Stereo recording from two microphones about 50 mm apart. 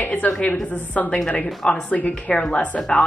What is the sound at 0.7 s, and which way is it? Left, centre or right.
A woman's voice, left.